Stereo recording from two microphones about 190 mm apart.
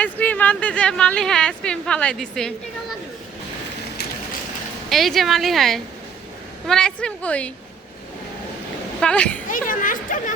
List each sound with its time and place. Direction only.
0.0 s speech: 10° left (ahead or behind)
4.9 s speech: centre (ahead or behind)
9.0 s speech: 5° left (ahead or behind)
9.5 s speech: 45° left (ahead or behind)